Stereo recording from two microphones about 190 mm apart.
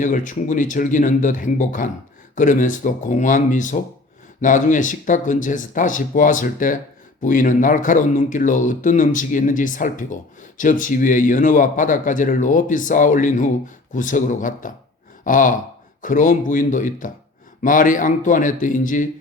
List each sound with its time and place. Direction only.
0.0 s speech: 40° left (ahead or behind)
15.2 s a sound: 45° left (ahead or behind)
16.0 s speech: 45° left (ahead or behind)